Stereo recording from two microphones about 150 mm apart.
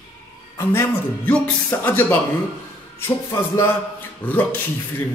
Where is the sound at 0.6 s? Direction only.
15° left (ahead or behind).